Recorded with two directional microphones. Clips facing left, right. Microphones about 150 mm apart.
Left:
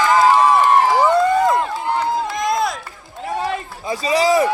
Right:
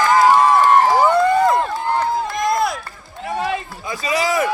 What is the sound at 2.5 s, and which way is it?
Run, centre (ahead or behind).